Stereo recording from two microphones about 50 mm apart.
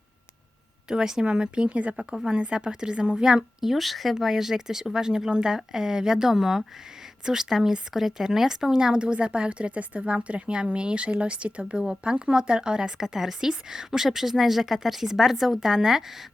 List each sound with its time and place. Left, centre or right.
0.9 s speech: centre
3.6 s speech: centre